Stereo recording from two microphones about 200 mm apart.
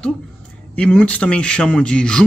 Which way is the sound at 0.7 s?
5° left (ahead or behind).